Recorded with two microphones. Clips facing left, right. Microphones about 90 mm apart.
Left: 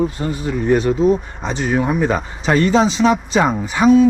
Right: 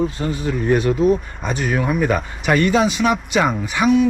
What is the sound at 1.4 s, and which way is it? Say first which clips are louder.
Speech: left 2 dB; 25° left (ahead or behind).